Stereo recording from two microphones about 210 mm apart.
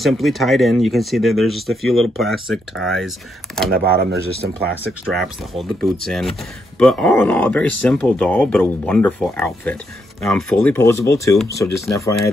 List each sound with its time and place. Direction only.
0.0 s speech: centre (ahead or behind)
3.7 s speech: 50° right (ahead or behind)
5.1 s speech: centre (ahead or behind)